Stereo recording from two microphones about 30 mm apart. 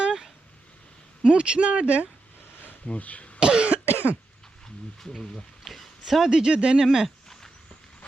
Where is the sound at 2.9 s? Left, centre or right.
Left.